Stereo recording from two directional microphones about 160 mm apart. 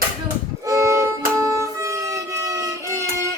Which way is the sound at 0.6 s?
20° right (ahead or behind).